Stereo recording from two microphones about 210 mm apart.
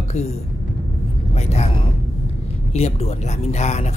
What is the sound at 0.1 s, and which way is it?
Speech, 30° left (ahead or behind).